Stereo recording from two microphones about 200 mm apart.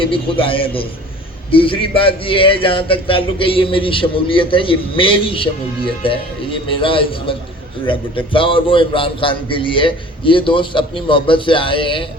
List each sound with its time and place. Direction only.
0.0 s a man's voice: 25° left (ahead or behind)